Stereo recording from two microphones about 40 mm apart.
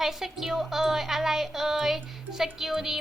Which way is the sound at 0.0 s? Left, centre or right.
Centre.